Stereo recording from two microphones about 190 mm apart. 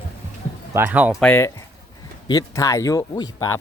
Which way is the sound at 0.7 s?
10° right (ahead or behind).